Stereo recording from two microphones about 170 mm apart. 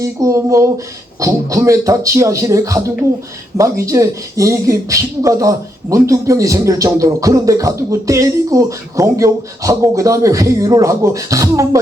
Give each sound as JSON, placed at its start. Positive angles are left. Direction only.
{"t": 0.0, "sound": "speech", "side_deg": -20}